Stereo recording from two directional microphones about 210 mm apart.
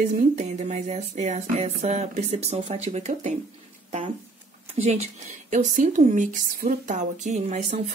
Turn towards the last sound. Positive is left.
turn(degrees=-35)  # may be behind; listen again after turning